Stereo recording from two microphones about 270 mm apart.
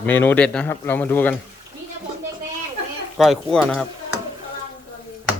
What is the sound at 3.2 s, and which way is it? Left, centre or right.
Speech, centre.